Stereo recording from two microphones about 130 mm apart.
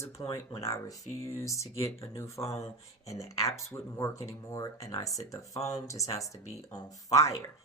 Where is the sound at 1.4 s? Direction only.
25° left (ahead or behind).